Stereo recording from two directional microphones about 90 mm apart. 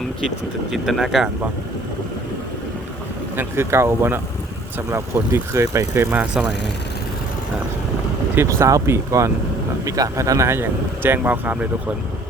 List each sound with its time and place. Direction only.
0.3 s speech: centre (ahead or behind)
3.3 s speech: 25° right (ahead or behind)
6.1 s speech: 15° right (ahead or behind)
8.4 s speech: 30° right (ahead or behind); by 11.7 s 15° right (ahead or behind)